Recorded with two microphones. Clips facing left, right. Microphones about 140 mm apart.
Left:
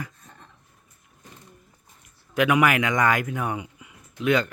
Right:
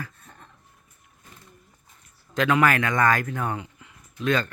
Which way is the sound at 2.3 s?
15° left (ahead or behind).